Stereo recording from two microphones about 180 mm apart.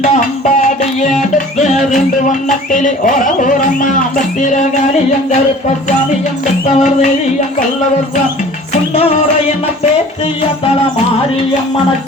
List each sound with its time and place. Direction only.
0.0 s speech: 45° left (ahead or behind)
1.5 s music: 40° left (ahead or behind)
1.8 s music: centre (ahead or behind)
2.2 s speech: 45° left (ahead or behind)
6.7 s music: 40° left (ahead or behind)
8.7 s music: 35° left (ahead or behind)